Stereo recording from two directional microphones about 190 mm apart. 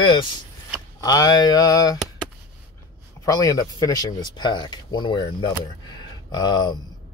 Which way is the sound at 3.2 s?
20° left (ahead or behind).